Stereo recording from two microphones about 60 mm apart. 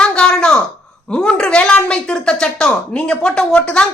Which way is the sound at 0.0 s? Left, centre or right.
Centre.